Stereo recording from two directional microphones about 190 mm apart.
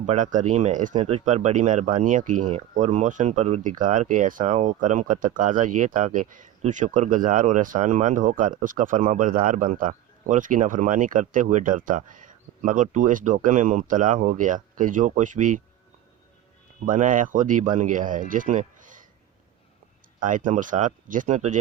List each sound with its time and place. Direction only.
0.0 s speech: 40° right (ahead or behind)
16.8 s speech: 45° right (ahead or behind)
20.1 s speech: 45° right (ahead or behind)